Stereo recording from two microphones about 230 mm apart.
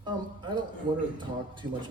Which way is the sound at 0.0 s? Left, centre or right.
Centre.